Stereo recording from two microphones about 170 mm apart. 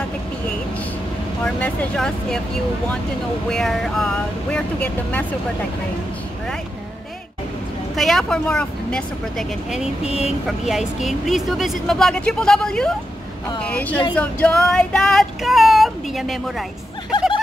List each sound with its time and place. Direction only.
1.4 s female singing: 5° left (ahead or behind)
3.4 s female singing: centre (ahead or behind)
7.9 s female singing: centre (ahead or behind)
10.0 s speech: 40° left (ahead or behind)
10.6 s female singing: centre (ahead or behind)
13.6 s speech: 10° left (ahead or behind)
14.1 s female singing: 5° left (ahead or behind)